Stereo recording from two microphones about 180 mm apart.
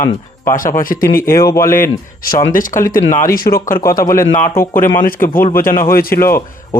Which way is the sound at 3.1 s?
15° left (ahead or behind).